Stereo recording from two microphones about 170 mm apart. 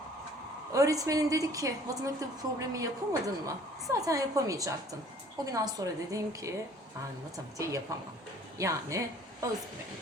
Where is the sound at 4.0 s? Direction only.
20° right (ahead or behind).